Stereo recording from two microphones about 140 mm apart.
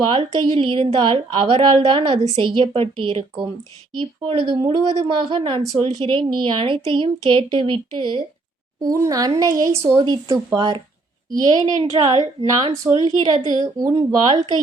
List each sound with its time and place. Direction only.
0.0 s a woman's voice: 40° right (ahead or behind)
5.0 s a woman's voice: 40° right (ahead or behind)
8.8 s a woman's voice: 25° right (ahead or behind)